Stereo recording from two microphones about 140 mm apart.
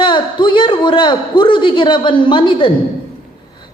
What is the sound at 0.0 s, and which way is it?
A man's voice, 35° left (ahead or behind).